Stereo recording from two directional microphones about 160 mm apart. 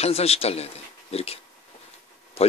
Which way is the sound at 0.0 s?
40° left (ahead or behind).